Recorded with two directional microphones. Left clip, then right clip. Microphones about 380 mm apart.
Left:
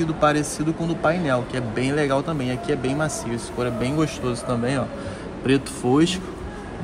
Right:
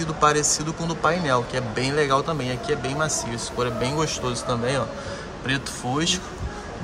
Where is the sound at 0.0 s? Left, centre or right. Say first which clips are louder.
Even; centre.